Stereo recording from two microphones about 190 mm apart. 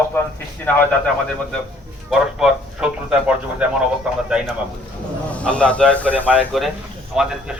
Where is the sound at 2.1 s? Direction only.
5° right (ahead or behind).